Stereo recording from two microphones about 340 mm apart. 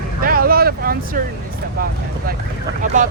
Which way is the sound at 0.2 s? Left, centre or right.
Right.